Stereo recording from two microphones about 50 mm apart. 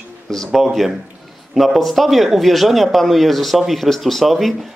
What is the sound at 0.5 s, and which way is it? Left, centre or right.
Speech, centre.